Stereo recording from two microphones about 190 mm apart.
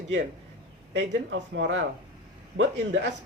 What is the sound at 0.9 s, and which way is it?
Speech, 75° right (ahead or behind).